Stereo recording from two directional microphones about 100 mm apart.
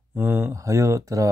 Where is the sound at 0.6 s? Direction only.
30° right (ahead or behind).